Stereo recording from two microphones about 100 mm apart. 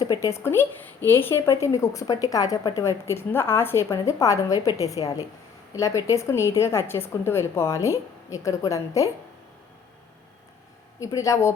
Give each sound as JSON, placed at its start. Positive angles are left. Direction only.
{"t": 0.0, "sound": "speech", "side_deg": 40}
{"t": 0.3, "sound": "a woman's voice", "side_deg": 25}
{"t": 11.0, "sound": "speech", "side_deg": 30}